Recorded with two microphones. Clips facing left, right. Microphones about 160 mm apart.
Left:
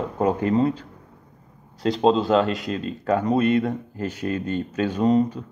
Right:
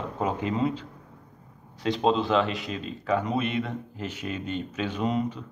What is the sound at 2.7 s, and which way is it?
Speech, 5° right (ahead or behind).